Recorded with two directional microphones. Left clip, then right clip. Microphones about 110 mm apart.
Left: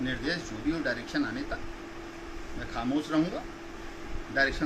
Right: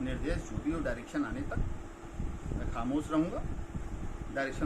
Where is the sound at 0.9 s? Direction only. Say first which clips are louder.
Left 5 dB; 20° left (ahead or behind).